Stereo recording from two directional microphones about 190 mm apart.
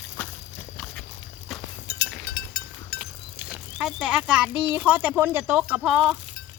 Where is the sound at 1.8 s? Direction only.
60° left (ahead or behind).